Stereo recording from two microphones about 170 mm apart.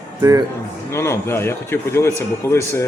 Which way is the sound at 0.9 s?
15° left (ahead or behind).